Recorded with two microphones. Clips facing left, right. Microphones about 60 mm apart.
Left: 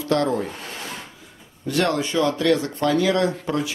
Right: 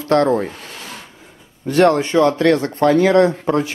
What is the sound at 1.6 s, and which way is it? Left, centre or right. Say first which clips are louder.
Speech: right 8 dB; right.